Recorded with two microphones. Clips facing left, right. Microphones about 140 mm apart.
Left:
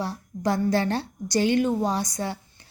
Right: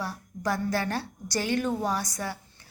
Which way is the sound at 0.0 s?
25° left (ahead or behind).